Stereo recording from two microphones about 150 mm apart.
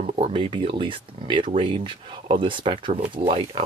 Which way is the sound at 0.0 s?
40° right (ahead or behind).